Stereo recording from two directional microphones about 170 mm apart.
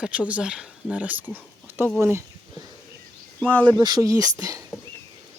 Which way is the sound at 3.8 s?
20° right (ahead or behind).